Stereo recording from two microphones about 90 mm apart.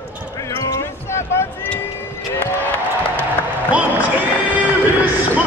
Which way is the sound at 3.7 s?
15° right (ahead or behind).